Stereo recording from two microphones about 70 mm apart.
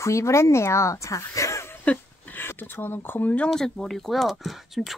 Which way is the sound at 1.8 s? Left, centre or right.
Centre.